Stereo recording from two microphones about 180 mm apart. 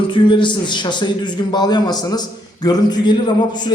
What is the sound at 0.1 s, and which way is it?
A man's voice, 25° left (ahead or behind).